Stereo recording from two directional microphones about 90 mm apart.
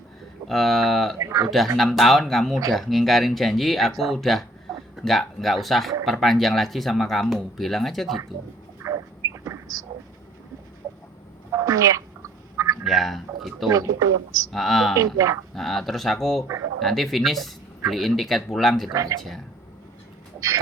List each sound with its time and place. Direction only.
0.4 s speech: centre (ahead or behind)
1.2 s speech: 40° right (ahead or behind)
1.5 s speech: centre (ahead or behind)
8.8 s a sound: 35° right (ahead or behind)
11.5 s a sound: 40° right (ahead or behind)
12.8 s speech: centre (ahead or behind)
13.7 s speech: 40° right (ahead or behind)
14.5 s speech: centre (ahead or behind)
14.9 s speech: 40° right (ahead or behind)
15.5 s speech: 5° left (ahead or behind)
18.9 s speech: 40° right (ahead or behind)